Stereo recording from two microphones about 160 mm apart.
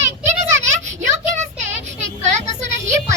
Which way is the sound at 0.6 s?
50° right (ahead or behind).